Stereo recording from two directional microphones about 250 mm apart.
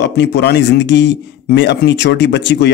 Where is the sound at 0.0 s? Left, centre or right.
Left.